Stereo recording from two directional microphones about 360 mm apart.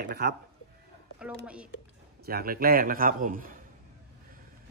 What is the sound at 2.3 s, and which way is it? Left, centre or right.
A man's voice, right.